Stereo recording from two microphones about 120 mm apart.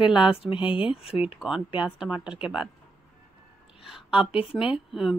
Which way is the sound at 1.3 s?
5° right (ahead or behind).